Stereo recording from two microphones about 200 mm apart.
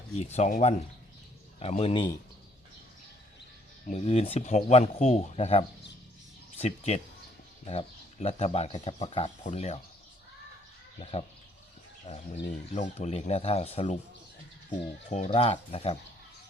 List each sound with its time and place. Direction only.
0.2 s speech: 35° left (ahead or behind)
3.8 s speech: 30° left (ahead or behind)
11.0 s speech: 30° left (ahead or behind)
12.7 s speech: 35° left (ahead or behind)
15.1 s speech: 30° left (ahead or behind)